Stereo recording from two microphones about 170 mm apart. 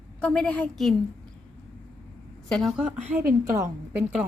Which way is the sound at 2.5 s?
5° left (ahead or behind).